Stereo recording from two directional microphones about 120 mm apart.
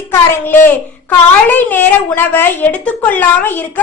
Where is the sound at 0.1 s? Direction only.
20° left (ahead or behind).